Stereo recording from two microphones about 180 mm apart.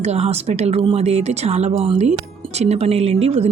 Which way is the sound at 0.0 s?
35° right (ahead or behind).